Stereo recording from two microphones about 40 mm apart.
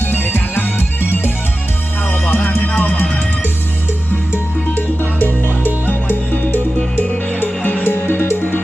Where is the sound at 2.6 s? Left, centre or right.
Left.